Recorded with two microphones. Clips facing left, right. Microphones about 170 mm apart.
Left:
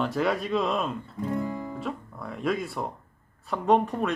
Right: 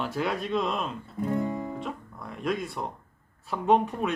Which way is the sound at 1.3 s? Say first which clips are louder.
Right 1 dB; 25° right (ahead or behind).